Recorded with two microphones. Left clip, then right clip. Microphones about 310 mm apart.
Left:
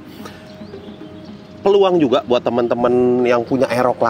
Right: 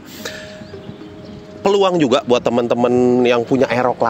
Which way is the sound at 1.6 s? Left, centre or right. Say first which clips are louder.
Left 1 dB; right.